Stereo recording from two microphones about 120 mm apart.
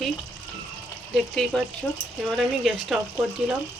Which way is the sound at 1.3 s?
Centre (ahead or behind).